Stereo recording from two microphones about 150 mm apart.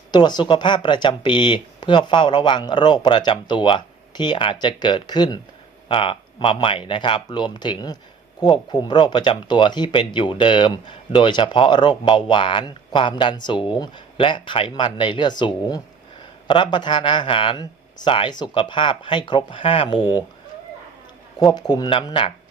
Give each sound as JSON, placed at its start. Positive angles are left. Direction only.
{"t": 0.1, "sound": "speech", "side_deg": 30}
{"t": 21.3, "sound": "speech", "side_deg": 25}